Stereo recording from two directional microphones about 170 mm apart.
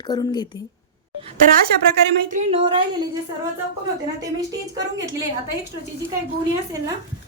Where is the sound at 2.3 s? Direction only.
40° right (ahead or behind).